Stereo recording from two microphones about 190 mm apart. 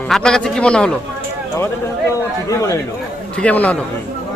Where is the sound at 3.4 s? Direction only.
5° left (ahead or behind).